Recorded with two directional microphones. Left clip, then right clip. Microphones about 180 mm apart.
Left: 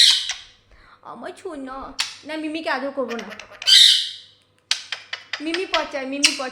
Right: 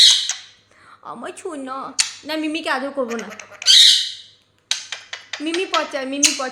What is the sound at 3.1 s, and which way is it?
Speech, 5° right (ahead or behind).